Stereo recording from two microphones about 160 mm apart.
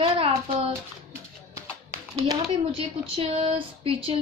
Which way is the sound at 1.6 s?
20° right (ahead or behind).